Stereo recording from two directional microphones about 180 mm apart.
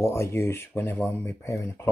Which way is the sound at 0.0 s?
15° left (ahead or behind).